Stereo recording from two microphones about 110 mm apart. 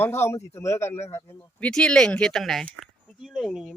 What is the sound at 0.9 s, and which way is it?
Speech, 90° left.